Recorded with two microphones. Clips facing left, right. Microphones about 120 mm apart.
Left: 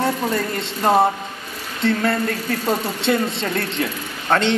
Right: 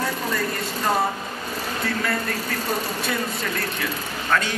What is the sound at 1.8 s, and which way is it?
A man's voice, 25° left (ahead or behind).